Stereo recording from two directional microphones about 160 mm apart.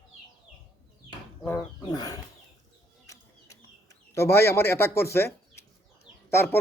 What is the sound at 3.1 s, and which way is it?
Bird, 20° left (ahead or behind).